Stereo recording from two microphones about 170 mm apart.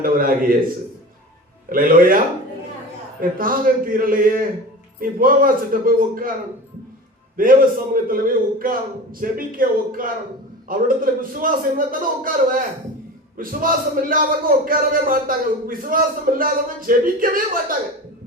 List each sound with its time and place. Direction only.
0.0 s a man's voice: 60° right (ahead or behind)
1.7 s a man's voice: 55° right (ahead or behind)
7.3 s a man's voice: 55° right (ahead or behind)